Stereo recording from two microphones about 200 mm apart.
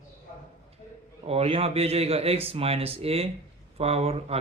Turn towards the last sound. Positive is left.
turn(degrees=-30)  # may be behind; listen again after turning